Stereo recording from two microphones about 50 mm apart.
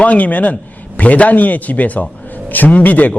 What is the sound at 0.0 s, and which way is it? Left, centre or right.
A man's voice, left.